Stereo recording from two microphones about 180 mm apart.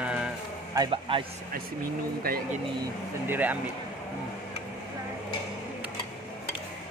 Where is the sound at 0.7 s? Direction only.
30° right (ahead or behind).